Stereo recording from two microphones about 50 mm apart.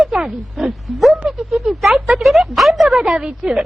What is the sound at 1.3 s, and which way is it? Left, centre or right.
Speech, centre.